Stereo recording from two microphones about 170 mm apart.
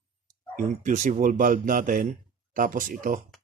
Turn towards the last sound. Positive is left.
turn(degrees=-50)  # may be behind; listen again after turning